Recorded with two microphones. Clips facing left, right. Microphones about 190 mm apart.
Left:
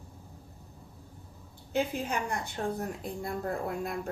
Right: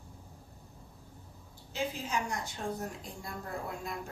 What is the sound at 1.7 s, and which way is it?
A woman's voice, 55° left (ahead or behind).